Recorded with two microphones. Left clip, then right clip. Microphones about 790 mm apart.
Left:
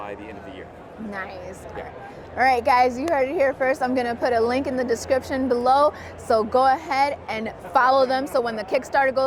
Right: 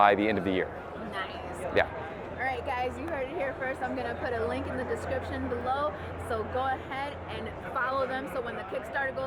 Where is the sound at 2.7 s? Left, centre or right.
Left.